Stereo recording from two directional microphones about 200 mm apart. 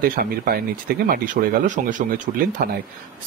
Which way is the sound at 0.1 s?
50° right (ahead or behind).